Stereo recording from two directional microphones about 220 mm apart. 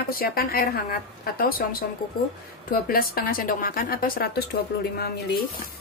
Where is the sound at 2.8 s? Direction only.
40° left (ahead or behind).